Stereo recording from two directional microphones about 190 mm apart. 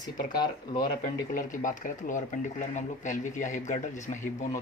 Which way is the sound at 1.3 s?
45° left (ahead or behind).